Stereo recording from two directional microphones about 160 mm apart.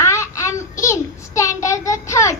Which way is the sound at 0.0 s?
20° left (ahead or behind).